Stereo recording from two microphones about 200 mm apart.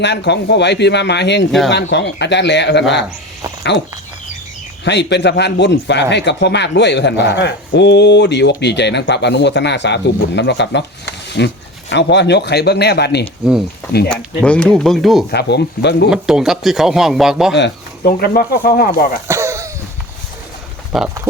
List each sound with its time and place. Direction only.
0.0 s speech: 60° left (ahead or behind)
4.9 s speech: 60° left (ahead or behind)
14.1 s a man's voice: 5° left (ahead or behind)
15.3 s speech: 55° left (ahead or behind)
16.0 s a man's voice: 5° right (ahead or behind)
17.5 s speech: 60° left (ahead or behind)
18.2 s speech: 50° left (ahead or behind)
19.3 s a sound: 15° right (ahead or behind)
20.9 s a man's voice: centre (ahead or behind)